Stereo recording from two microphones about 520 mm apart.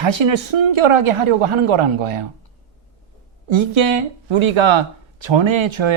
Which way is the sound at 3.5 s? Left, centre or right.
Right.